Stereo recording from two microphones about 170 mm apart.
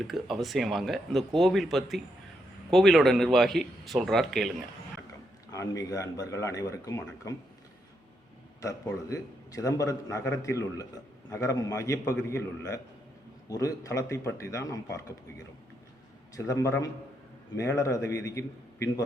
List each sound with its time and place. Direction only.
0.1 s speech: centre (ahead or behind)
5.5 s speech: 20° left (ahead or behind)
8.6 s a man's voice: 20° left (ahead or behind)
16.3 s a man's voice: 20° left (ahead or behind)